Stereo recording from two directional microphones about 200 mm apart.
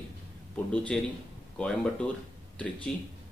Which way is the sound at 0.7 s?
5° left (ahead or behind).